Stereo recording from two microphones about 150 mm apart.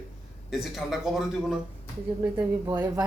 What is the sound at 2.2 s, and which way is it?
Speech, 15° right (ahead or behind).